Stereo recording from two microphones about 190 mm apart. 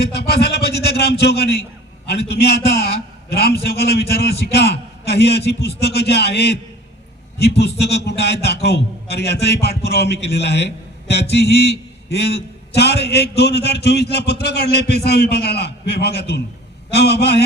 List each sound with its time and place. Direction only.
0.1 s a man's voice: 60° left (ahead or behind)